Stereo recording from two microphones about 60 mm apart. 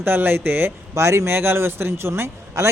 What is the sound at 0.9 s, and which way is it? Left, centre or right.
Speech, right.